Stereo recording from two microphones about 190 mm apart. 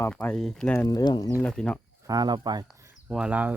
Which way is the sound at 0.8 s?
20° left (ahead or behind).